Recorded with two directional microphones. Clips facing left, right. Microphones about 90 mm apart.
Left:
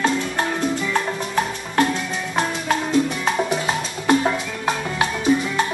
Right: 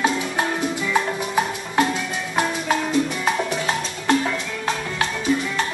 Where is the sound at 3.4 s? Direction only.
10° left (ahead or behind).